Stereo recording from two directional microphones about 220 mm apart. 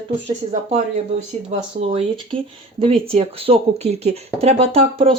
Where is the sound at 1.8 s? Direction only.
25° right (ahead or behind).